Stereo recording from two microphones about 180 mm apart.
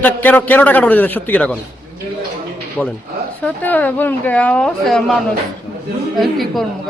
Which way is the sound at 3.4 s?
10° left (ahead or behind).